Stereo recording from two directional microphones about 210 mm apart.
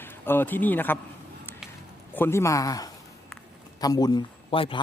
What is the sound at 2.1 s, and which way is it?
A man's voice, 10° left (ahead or behind).